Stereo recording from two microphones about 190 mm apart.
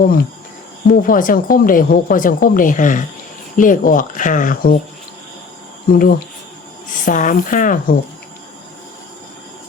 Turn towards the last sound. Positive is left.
turn(degrees=45)  # may be behind; listen again after turning